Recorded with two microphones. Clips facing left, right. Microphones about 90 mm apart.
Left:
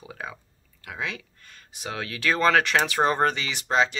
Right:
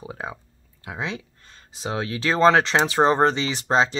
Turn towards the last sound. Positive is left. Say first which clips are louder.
# right 3 dB
turn(degrees=-30)  # may be behind; listen again after turning